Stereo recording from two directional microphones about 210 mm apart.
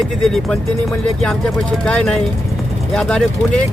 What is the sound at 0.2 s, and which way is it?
Speech, centre (ahead or behind).